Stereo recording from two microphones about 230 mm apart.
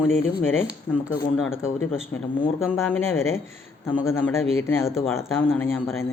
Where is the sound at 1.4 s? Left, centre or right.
Centre.